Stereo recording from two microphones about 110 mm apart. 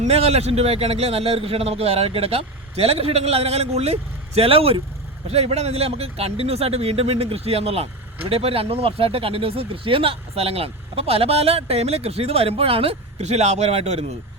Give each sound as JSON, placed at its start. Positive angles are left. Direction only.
{"t": 0.0, "sound": "a man's voice", "side_deg": -70}
{"t": 4.4, "sound": "speech", "side_deg": -60}
{"t": 5.3, "sound": "speech", "side_deg": -70}